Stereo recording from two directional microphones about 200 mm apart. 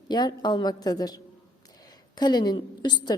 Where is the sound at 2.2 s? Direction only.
20° left (ahead or behind).